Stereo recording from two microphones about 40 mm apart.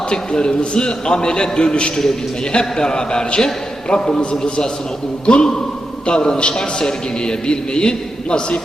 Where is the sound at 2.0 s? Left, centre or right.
Centre.